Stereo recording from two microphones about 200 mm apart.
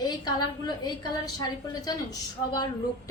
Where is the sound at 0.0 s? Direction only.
20° left (ahead or behind).